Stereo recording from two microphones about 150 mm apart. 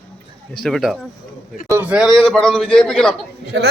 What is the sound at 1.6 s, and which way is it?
Speech, 15° right (ahead or behind).